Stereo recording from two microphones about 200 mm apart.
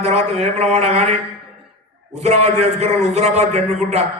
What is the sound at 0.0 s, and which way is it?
A man's voice, 35° right (ahead or behind).